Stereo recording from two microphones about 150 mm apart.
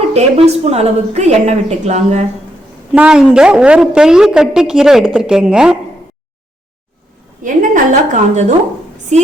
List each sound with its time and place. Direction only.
0.1 s a woman's voice: 45° right (ahead or behind)
2.9 s a woman's voice: 5° right (ahead or behind)
7.4 s a woman's voice: 55° right (ahead or behind)